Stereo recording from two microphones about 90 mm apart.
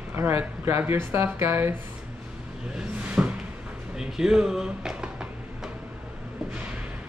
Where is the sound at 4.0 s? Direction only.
5° right (ahead or behind).